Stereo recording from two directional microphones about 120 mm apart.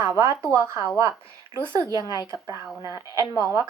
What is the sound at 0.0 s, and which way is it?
Speech, 25° right (ahead or behind).